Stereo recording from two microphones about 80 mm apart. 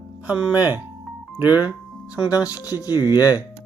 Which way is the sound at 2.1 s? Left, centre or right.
Left.